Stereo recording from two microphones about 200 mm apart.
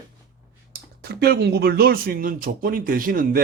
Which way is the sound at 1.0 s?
55° right (ahead or behind).